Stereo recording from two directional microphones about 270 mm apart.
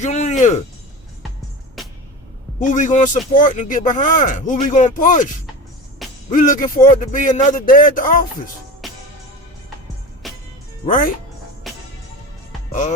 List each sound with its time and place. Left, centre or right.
0.0 s music: left
1.8 s music: centre
2.6 s speech: left
6.0 s music: centre
6.3 s speech: left
8.8 s music: centre
10.2 s music: centre
10.8 s speech: left
11.6 s music: centre